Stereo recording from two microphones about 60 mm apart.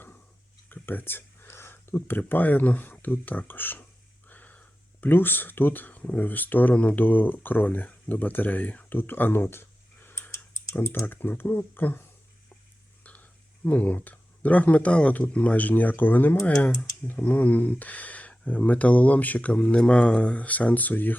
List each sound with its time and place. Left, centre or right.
0.7 s speech: left
4.3 s a sound: left
5.0 s speech: left
11.0 s speech: left
13.7 s speech: left